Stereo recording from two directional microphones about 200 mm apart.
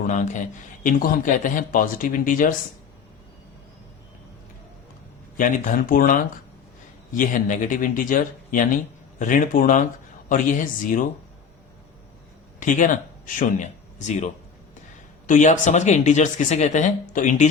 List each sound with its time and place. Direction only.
0.1 s speech: 40° left (ahead or behind)
5.4 s speech: 40° left (ahead or behind)
12.5 s speech: 40° left (ahead or behind)